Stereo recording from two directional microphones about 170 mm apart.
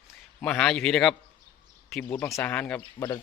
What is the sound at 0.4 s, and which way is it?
Speech, 5° left (ahead or behind).